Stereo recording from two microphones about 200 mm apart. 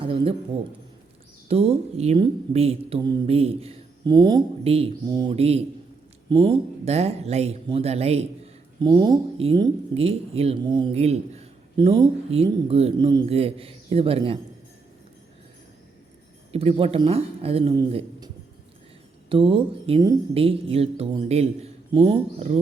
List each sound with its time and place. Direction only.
0.0 s a sound: 30° right (ahead or behind)
1.5 s speech: 30° right (ahead or behind)
16.5 s speech: 30° right (ahead or behind)
19.3 s speech: 25° right (ahead or behind)